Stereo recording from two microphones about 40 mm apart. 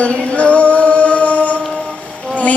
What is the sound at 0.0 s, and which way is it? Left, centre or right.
Music, left.